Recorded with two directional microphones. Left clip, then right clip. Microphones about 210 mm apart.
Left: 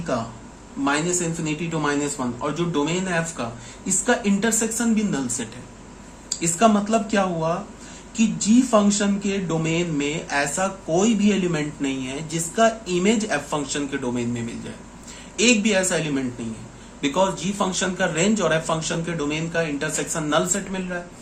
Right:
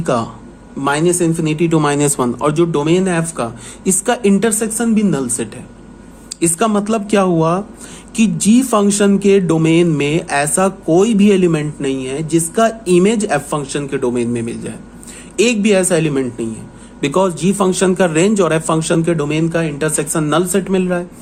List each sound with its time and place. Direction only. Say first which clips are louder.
0.0 s a man's voice: right 9 dB; 55° right (ahead or behind)